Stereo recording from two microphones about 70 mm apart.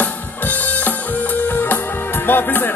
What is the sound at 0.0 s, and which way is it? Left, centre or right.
Music, left.